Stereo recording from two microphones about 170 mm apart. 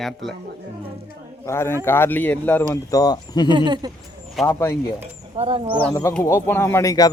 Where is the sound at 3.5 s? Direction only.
25° right (ahead or behind).